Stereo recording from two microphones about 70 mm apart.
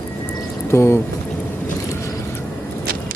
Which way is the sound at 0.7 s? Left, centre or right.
Left.